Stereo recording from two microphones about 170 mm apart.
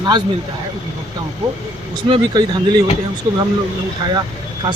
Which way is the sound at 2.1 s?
25° right (ahead or behind).